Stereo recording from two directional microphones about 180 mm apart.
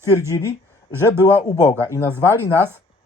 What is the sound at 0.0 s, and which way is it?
Speech, 15° right (ahead or behind).